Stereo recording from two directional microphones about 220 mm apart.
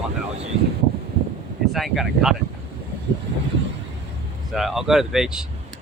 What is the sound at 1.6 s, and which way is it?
Speech, centre (ahead or behind).